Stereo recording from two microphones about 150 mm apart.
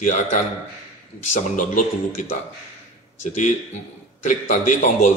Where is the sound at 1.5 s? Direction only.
60° left (ahead or behind).